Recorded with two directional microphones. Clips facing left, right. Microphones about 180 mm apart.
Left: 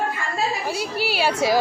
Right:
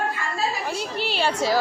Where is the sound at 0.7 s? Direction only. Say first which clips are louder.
Left 2 dB; 10° left (ahead or behind).